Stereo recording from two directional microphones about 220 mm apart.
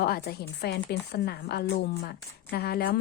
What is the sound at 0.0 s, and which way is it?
Speech, 45° left (ahead or behind).